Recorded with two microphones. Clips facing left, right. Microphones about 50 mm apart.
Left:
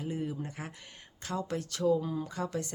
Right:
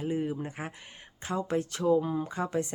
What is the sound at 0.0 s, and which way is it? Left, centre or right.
Speech, right.